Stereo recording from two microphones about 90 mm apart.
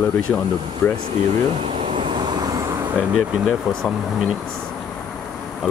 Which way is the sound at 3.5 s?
5° left (ahead or behind).